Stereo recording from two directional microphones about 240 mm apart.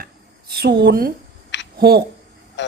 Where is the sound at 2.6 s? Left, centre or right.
Left.